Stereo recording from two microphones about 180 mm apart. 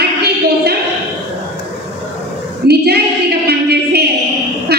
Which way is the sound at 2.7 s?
65° right (ahead or behind).